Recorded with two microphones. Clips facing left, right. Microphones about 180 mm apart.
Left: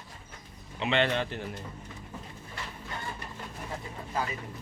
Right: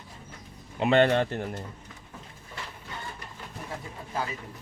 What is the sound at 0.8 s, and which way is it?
Speech, 45° right (ahead or behind).